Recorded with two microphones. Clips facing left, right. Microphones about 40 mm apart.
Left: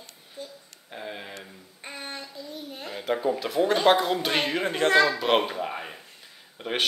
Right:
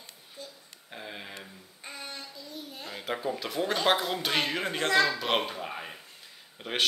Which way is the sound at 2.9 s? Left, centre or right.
Centre.